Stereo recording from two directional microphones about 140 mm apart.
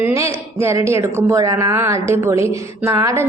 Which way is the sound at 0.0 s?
20° right (ahead or behind).